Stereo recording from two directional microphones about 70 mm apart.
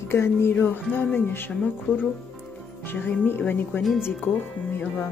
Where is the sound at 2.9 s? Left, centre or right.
Left.